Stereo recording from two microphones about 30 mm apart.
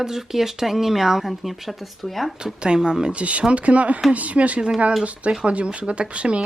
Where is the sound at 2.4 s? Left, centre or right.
Right.